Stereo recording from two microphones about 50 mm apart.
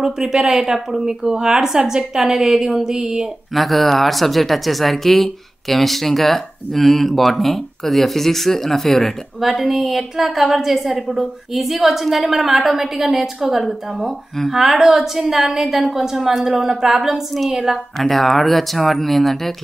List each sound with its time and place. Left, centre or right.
0.0 s speech: centre
3.5 s speech: centre